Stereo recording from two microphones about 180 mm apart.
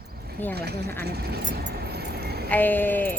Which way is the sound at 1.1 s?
60° right (ahead or behind).